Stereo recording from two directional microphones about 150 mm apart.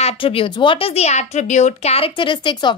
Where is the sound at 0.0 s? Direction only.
40° left (ahead or behind).